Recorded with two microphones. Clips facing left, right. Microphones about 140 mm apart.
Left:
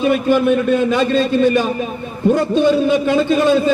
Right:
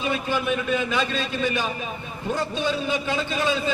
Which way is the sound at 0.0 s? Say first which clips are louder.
Left 11 dB; 50° left (ahead or behind).